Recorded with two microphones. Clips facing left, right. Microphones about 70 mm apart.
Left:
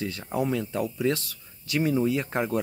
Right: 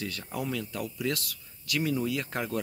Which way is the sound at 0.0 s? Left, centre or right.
Left.